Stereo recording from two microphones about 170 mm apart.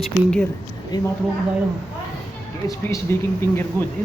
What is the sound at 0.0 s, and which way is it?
Speech, 5° left (ahead or behind).